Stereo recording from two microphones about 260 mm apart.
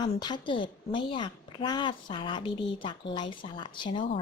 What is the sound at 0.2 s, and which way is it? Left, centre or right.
A woman's voice, centre.